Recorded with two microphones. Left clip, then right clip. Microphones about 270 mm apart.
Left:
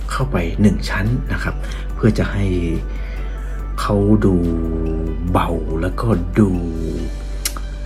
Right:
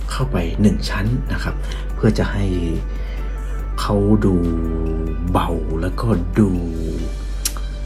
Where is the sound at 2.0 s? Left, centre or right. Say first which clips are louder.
Left 1 dB; centre.